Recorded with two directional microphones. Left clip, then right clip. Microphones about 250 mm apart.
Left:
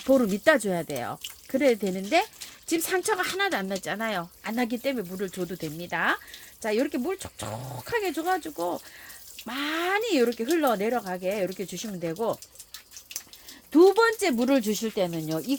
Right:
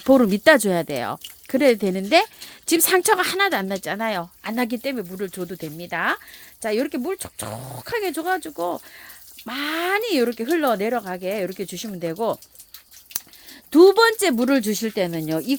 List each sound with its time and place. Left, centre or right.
0.0 s speech: right
13.7 s speech: right